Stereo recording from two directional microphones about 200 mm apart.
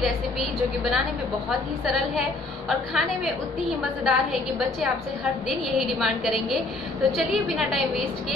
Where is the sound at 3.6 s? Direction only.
Centre (ahead or behind).